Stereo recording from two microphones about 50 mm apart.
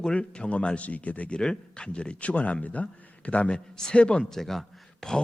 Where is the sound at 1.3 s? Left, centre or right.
Centre.